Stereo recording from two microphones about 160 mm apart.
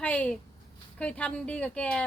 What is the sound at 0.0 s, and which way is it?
A woman's voice, 10° left (ahead or behind).